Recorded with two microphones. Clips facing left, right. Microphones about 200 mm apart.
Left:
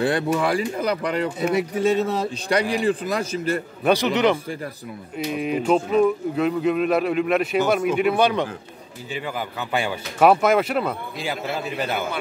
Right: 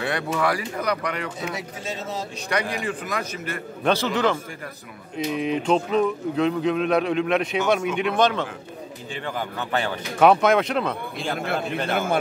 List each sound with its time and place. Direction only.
0.0 s speech: 30° left (ahead or behind)
1.4 s speech: 60° left (ahead or behind)
2.3 s a man's voice: 30° left (ahead or behind)
3.8 s a man's voice: 15° left (ahead or behind)
5.1 s speech: 5° left (ahead or behind)